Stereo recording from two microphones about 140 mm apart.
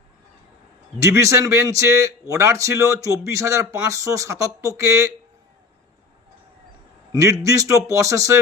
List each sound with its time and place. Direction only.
0.9 s a man's voice: 25° right (ahead or behind)
7.1 s a man's voice: 25° right (ahead or behind)